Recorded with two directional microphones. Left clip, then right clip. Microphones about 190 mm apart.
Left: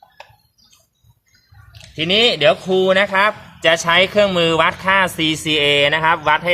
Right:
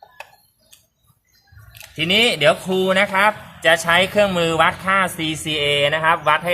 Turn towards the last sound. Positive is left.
turn(degrees=30)  # may be behind; listen again after turning